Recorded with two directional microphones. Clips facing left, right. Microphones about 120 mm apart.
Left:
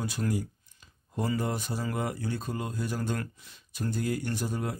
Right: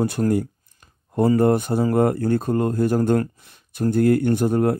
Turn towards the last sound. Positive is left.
turn(degrees=-60)  # may be behind; listen again after turning